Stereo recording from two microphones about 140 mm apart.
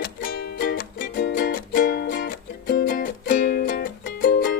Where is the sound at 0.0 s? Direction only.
90° left.